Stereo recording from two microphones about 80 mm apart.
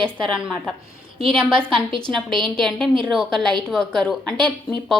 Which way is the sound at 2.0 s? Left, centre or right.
Centre.